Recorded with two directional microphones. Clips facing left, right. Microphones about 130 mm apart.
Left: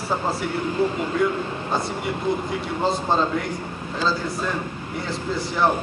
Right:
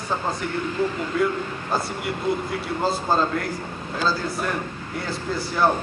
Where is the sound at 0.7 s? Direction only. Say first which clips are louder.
Left 3 dB; 25° left (ahead or behind).